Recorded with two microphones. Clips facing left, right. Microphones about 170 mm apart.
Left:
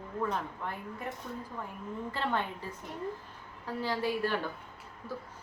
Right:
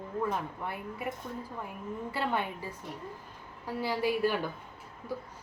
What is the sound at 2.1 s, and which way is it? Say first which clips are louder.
A woman's voice: right 1 dB; 10° right (ahead or behind).